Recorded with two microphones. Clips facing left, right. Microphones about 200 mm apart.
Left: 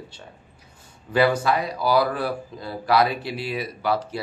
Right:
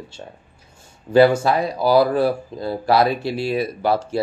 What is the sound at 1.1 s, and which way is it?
Speech, 25° right (ahead or behind).